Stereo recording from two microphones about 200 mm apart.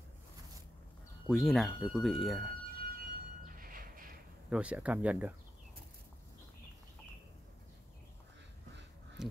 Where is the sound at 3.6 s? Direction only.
45° right (ahead or behind).